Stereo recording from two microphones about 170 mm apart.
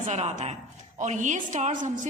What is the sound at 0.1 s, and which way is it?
A woman's voice, 40° right (ahead or behind).